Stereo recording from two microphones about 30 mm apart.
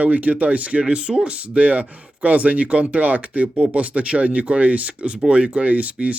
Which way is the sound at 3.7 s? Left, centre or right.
Right.